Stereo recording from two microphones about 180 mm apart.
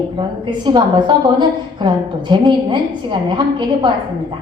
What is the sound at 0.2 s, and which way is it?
A woman's voice, 25° right (ahead or behind).